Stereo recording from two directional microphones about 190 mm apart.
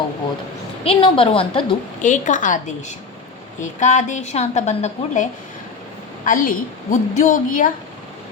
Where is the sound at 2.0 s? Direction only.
40° left (ahead or behind).